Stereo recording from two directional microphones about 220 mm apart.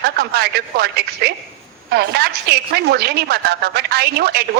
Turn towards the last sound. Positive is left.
turn(degrees=-45)  # may be behind; listen again after turning